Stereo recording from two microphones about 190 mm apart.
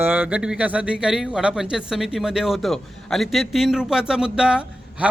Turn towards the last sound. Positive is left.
turn(degrees=-5)  # may be behind; listen again after turning